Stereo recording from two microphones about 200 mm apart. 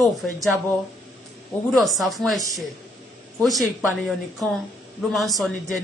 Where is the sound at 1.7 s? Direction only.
Centre (ahead or behind).